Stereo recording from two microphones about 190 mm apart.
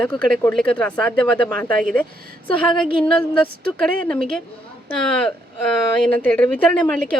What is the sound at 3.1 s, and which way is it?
A woman's voice, 5° left (ahead or behind).